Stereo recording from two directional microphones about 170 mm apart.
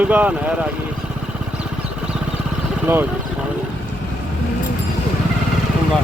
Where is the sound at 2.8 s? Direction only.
10° right (ahead or behind).